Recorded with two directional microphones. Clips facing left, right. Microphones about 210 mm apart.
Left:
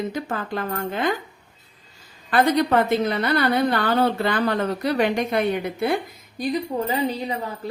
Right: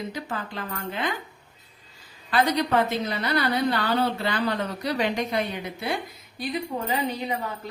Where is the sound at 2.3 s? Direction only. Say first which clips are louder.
Left 4 dB; 50° left (ahead or behind).